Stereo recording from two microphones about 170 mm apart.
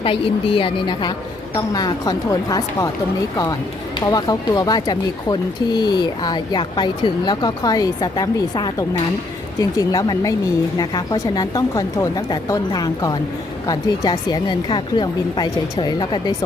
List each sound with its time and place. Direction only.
0.0 s a woman's voice: 30° left (ahead or behind)